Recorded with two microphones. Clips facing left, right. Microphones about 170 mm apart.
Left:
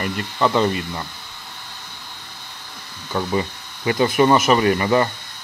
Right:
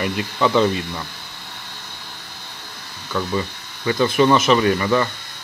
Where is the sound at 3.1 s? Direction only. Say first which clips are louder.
Even; 20° left (ahead or behind).